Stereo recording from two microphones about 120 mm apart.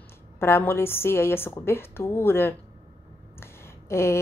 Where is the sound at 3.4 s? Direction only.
20° left (ahead or behind).